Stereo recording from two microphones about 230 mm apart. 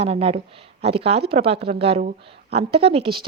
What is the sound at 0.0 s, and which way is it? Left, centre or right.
Speech, right.